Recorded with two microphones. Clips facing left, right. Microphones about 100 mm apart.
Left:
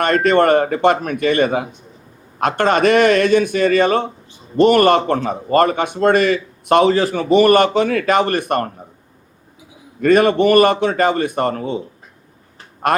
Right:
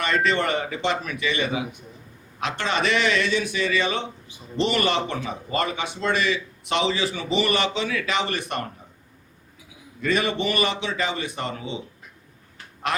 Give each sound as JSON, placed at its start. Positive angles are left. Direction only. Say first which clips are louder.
{"t": 0.0, "sound": "a man's voice", "louder": "left 9 dB", "side_deg": 50}
{"t": 10.0, "sound": "a man's voice", "louder": "left 11 dB", "side_deg": 50}